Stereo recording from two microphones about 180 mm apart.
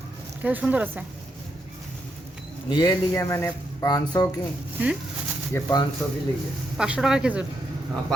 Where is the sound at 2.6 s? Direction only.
20° left (ahead or behind).